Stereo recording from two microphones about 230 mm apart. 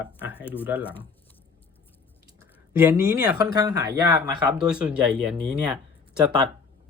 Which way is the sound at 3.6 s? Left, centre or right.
Centre.